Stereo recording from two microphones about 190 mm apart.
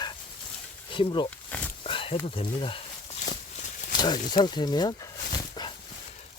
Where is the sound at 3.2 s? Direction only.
40° left (ahead or behind).